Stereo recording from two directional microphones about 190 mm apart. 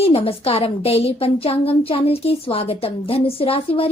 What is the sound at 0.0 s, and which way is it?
A woman's voice, 30° left (ahead or behind).